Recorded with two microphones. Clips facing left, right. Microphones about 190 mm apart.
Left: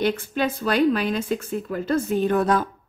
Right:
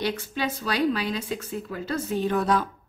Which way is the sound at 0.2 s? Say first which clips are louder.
Left 5 dB; 55° left (ahead or behind).